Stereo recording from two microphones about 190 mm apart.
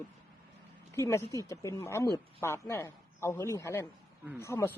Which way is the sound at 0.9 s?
15° left (ahead or behind).